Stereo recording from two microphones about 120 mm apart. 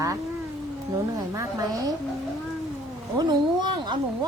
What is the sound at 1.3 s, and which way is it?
Speech, 30° right (ahead or behind).